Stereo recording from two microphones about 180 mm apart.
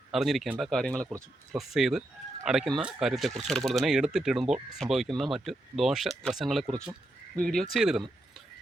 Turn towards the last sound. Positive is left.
turn(degrees=-5)  # may be behind; listen again after turning